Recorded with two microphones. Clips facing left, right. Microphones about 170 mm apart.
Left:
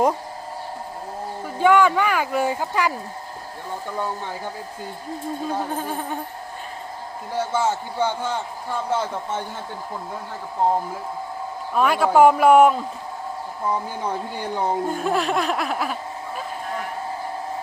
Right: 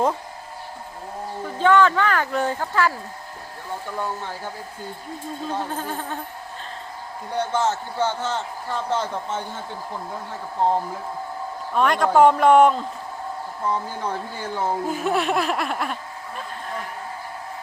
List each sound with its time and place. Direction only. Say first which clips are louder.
1.5 s a man's voice: left 1 dB; 10° left (ahead or behind)
5.5 s a man's voice: even; 10° left (ahead or behind)
7.3 s a man's voice: even; 10° left (ahead or behind)
11.7 s a man's voice: left 1 dB; 5° left (ahead or behind)
14.8 s speech: even; 5° right (ahead or behind)